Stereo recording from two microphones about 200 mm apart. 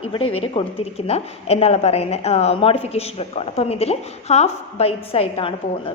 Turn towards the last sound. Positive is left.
turn(degrees=30)  # may be behind; listen again after turning